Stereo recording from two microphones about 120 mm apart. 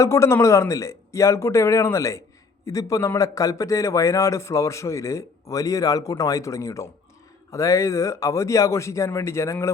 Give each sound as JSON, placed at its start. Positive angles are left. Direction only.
{"t": 0.0, "sound": "speech", "side_deg": 25}